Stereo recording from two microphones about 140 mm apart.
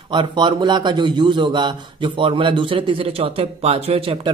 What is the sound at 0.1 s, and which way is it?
A man's voice, 35° right (ahead or behind).